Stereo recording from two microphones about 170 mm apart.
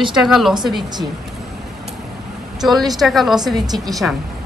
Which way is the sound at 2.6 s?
Centre (ahead or behind).